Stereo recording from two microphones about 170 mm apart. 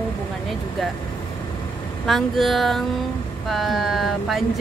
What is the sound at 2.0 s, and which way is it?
Speech, centre (ahead or behind).